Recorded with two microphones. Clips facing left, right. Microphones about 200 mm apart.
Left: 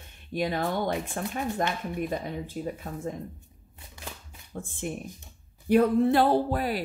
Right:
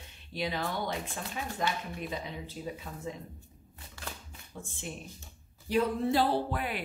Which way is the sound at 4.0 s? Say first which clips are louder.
Left 1 dB; 20° left (ahead or behind).